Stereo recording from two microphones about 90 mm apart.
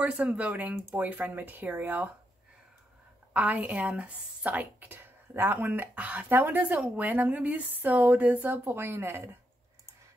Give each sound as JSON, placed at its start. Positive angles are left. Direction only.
{"t": 0.0, "sound": "a woman's voice", "side_deg": -15}
{"t": 3.3, "sound": "a woman's voice", "side_deg": -15}